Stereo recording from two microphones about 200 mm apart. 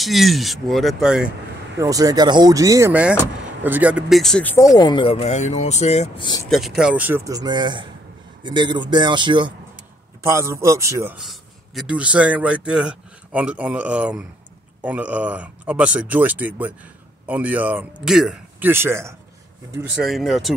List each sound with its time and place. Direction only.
0.0 s speech: centre (ahead or behind)
1.8 s speech: 15° right (ahead or behind); by 6.4 s 25° left (ahead or behind)
6.5 s speech: centre (ahead or behind); by 9.5 s 25° right (ahead or behind)
10.2 s speech: 15° right (ahead or behind)
11.1 s a man's voice: centre (ahead or behind)
20.0 s speech: centre (ahead or behind)